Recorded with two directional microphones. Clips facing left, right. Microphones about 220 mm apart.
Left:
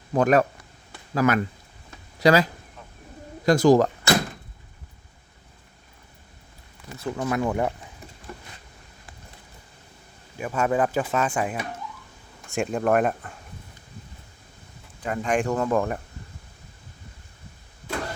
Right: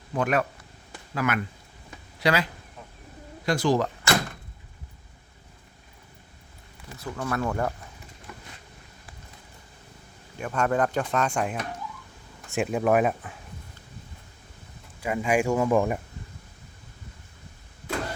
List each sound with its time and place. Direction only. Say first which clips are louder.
0.1 s speech: left 6 dB; 40° left (ahead or behind)
7.2 s speech: left 3 dB; 15° left (ahead or behind)
10.3 s speech: left 1 dB; 5° left (ahead or behind)
15.0 s speech: right 1 dB; 10° right (ahead or behind)